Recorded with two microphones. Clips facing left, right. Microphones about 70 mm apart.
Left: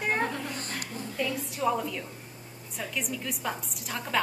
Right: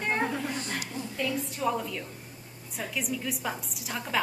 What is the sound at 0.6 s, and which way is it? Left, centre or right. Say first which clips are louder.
Speech: right 2 dB; left.